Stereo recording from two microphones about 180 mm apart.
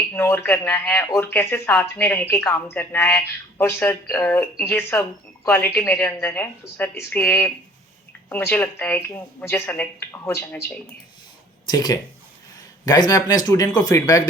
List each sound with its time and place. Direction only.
0.1 s speech: 10° left (ahead or behind)
11.6 s speech: 20° left (ahead or behind)